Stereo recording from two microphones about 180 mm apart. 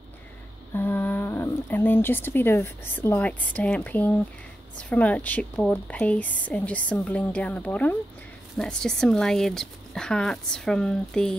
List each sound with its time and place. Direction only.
0.7 s a woman's voice: 10° left (ahead or behind)